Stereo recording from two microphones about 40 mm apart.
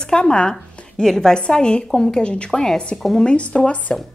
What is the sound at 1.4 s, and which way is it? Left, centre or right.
Speech, left.